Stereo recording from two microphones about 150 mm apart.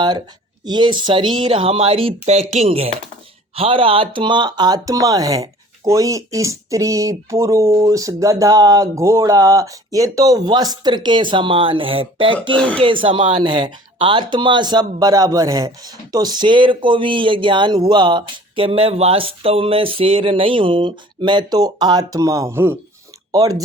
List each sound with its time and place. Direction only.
0.6 s speech: 30° right (ahead or behind)
12.5 s speech: 5° left (ahead or behind)
12.8 s speech: 35° right (ahead or behind)